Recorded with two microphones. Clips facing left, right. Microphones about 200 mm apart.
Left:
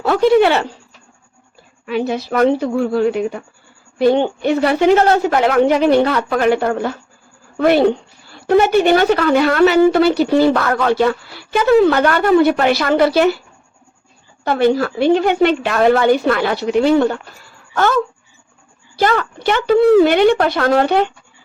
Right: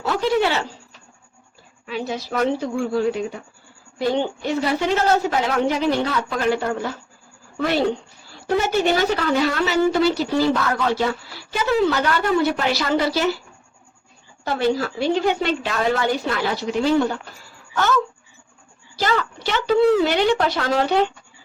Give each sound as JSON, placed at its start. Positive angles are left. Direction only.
{"t": 0.0, "sound": "a woman's voice", "side_deg": 60}
{"t": 1.9, "sound": "a woman's voice", "side_deg": 60}
{"t": 14.4, "sound": "a woman's voice", "side_deg": 60}
{"t": 18.9, "sound": "a woman's voice", "side_deg": 55}